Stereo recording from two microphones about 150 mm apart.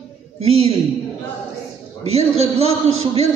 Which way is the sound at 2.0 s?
45° right (ahead or behind).